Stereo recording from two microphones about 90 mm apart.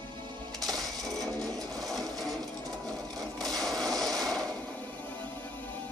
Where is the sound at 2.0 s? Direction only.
45° right (ahead or behind).